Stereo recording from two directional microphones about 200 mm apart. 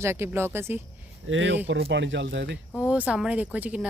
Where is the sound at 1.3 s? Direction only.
70° right (ahead or behind).